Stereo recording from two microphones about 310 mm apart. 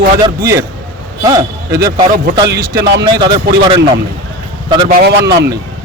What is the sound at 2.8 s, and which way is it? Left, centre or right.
Speech, right.